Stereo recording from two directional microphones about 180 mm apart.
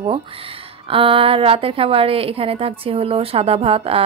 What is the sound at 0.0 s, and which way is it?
Speech, 30° right (ahead or behind).